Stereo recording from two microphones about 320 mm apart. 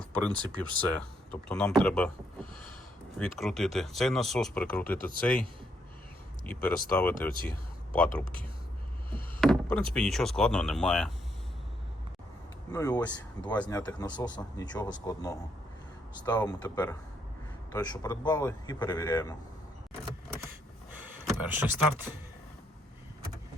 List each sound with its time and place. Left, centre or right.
0.0 s speech: centre
3.2 s speech: centre
8.2 s speech: left
9.4 s door: centre
9.9 s speech: centre
12.7 s speech: centre
21.5 s speech: centre